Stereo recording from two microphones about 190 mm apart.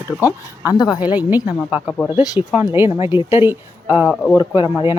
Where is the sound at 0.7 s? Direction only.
20° left (ahead or behind).